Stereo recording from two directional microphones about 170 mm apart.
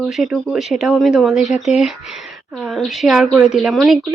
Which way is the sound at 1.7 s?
Centre (ahead or behind).